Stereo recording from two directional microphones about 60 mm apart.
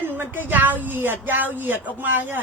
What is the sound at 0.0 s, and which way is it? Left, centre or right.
Speech, right.